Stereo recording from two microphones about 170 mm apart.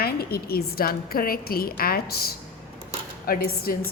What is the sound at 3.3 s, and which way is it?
Speech, 60° left (ahead or behind).